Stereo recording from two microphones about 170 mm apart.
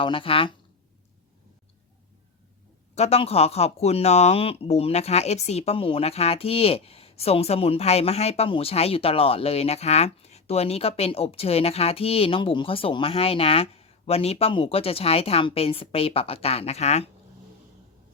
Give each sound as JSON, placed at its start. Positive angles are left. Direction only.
{"t": 0.0, "sound": "speech", "side_deg": 30}
{"t": 2.9, "sound": "speech", "side_deg": 40}